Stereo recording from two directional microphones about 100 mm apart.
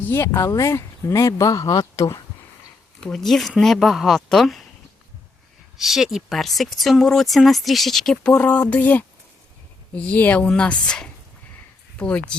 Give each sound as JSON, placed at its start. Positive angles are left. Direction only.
{"t": 0.0, "sound": "speech", "side_deg": 25}
{"t": 3.0, "sound": "speech", "side_deg": 5}
{"t": 5.7, "sound": "speech", "side_deg": 0}